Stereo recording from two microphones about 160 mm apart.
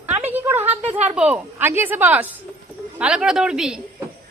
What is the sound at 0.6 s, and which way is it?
Speech, 40° right (ahead or behind).